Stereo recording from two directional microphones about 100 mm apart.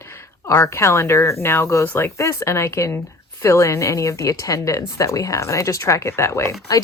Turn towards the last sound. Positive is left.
turn(degrees=35)  # may be behind; listen again after turning